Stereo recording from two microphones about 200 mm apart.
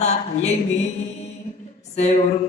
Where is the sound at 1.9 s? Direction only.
30° left (ahead or behind).